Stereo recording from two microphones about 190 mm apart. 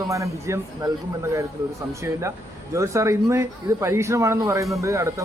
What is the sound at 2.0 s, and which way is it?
Speech, 15° right (ahead or behind).